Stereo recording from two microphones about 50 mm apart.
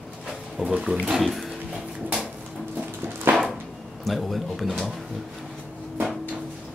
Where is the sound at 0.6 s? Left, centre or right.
Centre.